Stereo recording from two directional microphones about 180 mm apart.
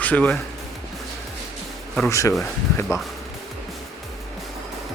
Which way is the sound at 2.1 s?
15° left (ahead or behind).